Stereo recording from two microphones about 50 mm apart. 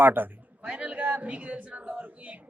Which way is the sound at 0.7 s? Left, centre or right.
Right.